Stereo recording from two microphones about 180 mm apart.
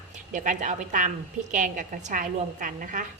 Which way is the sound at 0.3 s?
45° right (ahead or behind).